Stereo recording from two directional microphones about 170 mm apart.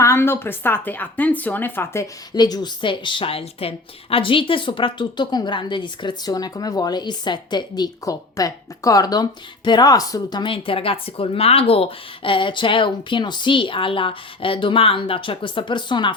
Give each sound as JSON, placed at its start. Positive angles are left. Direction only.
{"t": 0.0, "sound": "speech", "side_deg": 15}